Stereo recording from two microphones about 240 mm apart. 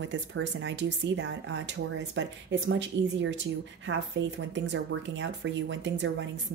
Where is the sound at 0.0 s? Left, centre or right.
Right.